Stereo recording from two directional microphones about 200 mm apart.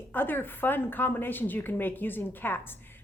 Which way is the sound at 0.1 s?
10° left (ahead or behind).